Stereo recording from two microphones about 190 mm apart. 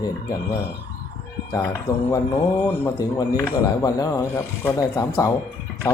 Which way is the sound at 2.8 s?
15° left (ahead or behind).